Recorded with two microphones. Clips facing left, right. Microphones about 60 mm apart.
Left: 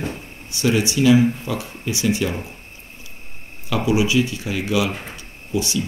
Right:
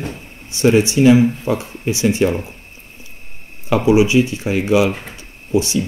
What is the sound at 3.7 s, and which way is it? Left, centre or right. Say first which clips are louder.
Speech: right 6 dB; right.